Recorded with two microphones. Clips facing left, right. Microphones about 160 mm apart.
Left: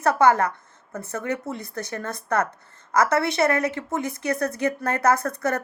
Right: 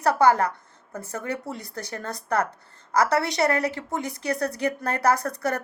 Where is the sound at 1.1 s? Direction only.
35° right (ahead or behind).